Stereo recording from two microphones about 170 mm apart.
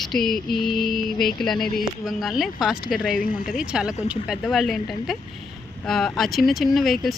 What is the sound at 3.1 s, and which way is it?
Speech, 55° left (ahead or behind).